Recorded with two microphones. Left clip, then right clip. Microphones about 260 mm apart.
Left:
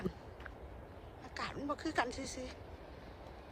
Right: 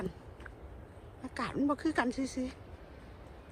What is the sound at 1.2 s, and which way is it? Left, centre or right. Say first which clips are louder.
A woman's voice: right 8 dB; centre.